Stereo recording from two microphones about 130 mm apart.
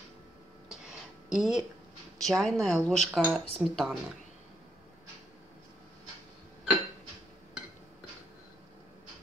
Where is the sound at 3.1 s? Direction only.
10° right (ahead or behind).